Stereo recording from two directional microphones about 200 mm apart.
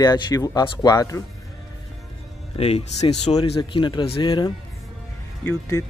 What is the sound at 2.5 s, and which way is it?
Speech, 30° left (ahead or behind).